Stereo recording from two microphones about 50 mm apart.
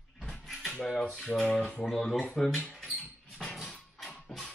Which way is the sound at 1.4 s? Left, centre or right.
Centre.